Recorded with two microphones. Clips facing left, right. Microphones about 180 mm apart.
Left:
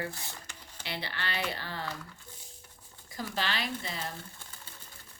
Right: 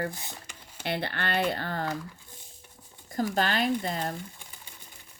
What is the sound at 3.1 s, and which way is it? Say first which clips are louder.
Speech: right 7 dB; 50° right (ahead or behind).